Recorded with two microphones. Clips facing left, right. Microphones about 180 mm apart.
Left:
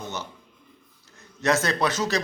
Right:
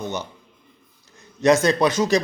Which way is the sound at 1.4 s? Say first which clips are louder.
Right 7 dB; 15° right (ahead or behind).